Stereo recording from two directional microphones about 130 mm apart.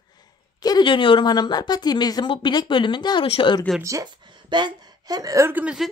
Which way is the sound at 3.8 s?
25° right (ahead or behind).